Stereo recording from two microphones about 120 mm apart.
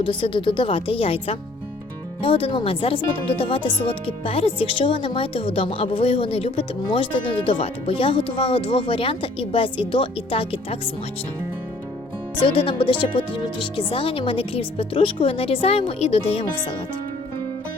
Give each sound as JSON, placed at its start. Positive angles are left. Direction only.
{"t": 0.0, "sound": "speech", "side_deg": 45}
{"t": 12.4, "sound": "speech", "side_deg": 45}